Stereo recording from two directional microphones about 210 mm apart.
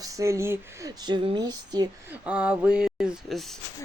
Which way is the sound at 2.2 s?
5° right (ahead or behind).